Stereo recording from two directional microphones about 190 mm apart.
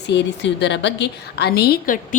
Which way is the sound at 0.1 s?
70° left (ahead or behind).